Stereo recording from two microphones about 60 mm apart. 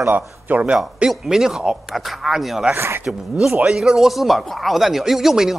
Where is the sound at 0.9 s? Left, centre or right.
Centre.